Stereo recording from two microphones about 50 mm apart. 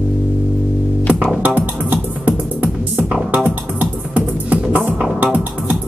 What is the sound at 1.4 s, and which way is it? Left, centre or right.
Music, right.